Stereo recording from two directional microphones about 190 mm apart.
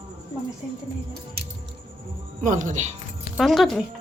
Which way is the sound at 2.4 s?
40° right (ahead or behind).